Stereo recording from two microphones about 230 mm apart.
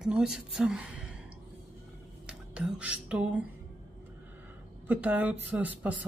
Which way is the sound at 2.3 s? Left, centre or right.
Centre.